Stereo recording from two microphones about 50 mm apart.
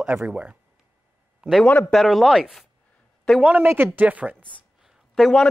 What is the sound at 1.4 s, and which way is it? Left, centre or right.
A man's voice, centre.